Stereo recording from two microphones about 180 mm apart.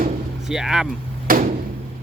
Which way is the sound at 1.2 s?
50° right (ahead or behind).